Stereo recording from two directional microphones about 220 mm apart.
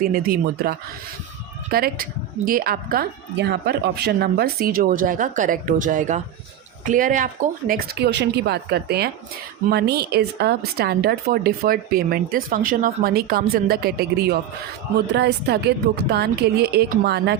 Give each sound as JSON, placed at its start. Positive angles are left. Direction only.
{"t": 0.0, "sound": "a woman's voice", "side_deg": -40}